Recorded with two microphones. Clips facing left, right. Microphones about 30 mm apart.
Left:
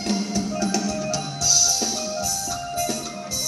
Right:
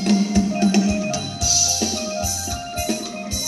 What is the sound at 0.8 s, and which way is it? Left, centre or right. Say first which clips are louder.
Music: right 3 dB; right.